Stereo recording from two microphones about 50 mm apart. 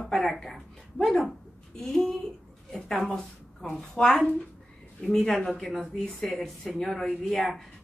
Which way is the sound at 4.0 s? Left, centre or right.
Centre.